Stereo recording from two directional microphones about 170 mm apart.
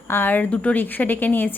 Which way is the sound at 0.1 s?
10° left (ahead or behind).